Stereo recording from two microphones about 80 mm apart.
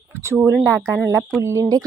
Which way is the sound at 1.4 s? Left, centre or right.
Right.